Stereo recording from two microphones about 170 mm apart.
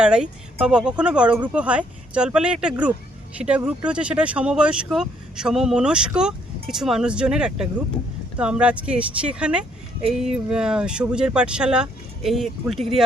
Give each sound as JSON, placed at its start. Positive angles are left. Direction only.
{"t": 0.0, "sound": "speech", "side_deg": -5}